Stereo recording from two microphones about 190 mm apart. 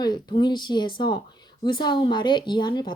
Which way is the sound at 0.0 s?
20° left (ahead or behind).